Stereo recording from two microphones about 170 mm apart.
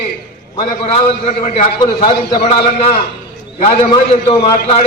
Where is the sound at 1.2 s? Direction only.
35° left (ahead or behind).